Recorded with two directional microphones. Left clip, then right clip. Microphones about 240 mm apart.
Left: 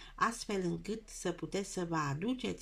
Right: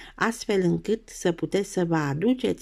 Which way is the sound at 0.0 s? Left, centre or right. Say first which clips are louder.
Right 7 dB; right.